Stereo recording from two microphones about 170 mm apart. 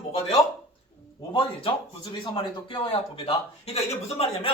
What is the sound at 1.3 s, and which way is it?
A woman's voice, 30° left (ahead or behind).